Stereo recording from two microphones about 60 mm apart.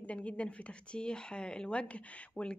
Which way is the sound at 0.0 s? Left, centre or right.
Left.